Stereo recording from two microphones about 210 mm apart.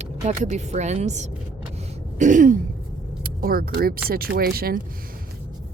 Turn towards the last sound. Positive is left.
turn(degrees=-45)  # may be behind; listen again after turning